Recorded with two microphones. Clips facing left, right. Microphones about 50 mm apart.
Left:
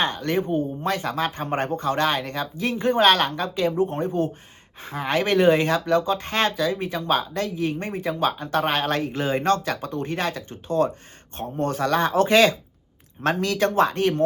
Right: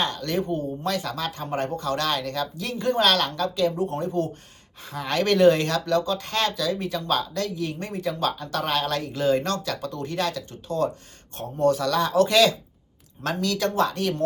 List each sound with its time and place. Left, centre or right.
0.0 s speech: left